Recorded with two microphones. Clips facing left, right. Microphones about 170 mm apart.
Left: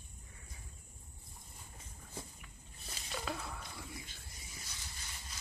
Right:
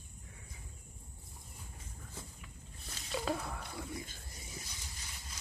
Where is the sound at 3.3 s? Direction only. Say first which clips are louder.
Right 6 dB; 35° right (ahead or behind).